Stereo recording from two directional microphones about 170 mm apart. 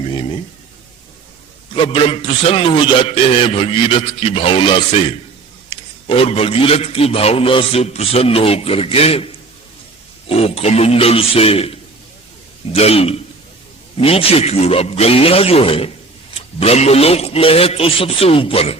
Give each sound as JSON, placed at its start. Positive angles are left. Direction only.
{"t": 1.7, "sound": "a man's voice", "side_deg": 35}